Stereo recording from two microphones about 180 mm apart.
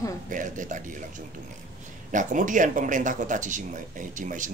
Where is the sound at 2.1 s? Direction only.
45° right (ahead or behind).